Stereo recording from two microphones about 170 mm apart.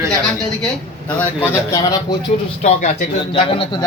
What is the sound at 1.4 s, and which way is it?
Speech, 20° left (ahead or behind).